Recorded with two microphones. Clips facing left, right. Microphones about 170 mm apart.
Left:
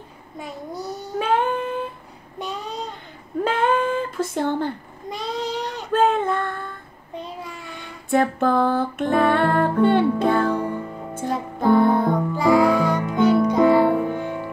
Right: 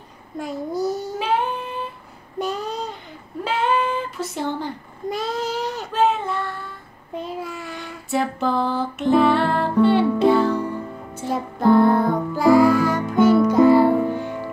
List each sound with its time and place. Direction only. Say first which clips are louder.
0.4 s child singing: right 7 dB; centre (ahead or behind)
1.2 s a sound: left 3 dB; 50° left (ahead or behind)
2.3 s child singing: right 4 dB; centre (ahead or behind)
3.4 s a sound: left 1 dB; 50° left (ahead or behind)
5.1 s child singing: right 1 dB; 5° right (ahead or behind)
5.9 s child singing: left 2 dB; 50° left (ahead or behind)
7.2 s child singing: right 4 dB; 5° right (ahead or behind)
8.1 s music: left 3 dB; 50° left (ahead or behind)
11.2 s music: right 2 dB; centre (ahead or behind)